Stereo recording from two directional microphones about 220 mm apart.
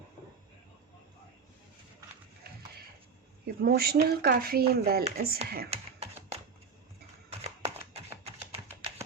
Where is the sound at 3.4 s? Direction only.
40° right (ahead or behind).